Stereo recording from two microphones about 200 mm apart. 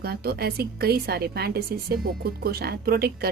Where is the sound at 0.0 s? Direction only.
50° right (ahead or behind).